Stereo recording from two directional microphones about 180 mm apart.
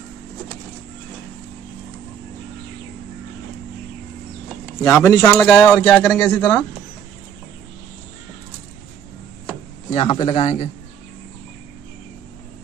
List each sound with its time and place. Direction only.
4.8 s speech: 15° left (ahead or behind)
9.9 s a man's voice: 30° left (ahead or behind)